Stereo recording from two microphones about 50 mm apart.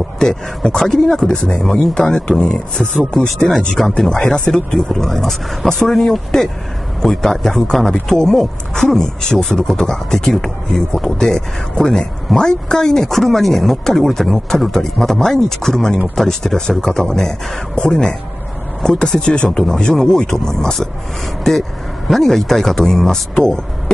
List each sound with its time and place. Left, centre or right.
0.2 s speech: centre